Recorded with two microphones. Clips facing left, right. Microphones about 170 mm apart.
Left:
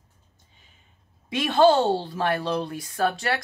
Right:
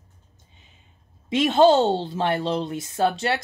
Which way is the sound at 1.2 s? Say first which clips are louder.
Right 2 dB; 20° right (ahead or behind).